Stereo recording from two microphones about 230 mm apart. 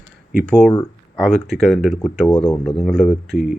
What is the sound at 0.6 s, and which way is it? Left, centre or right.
Speech, centre.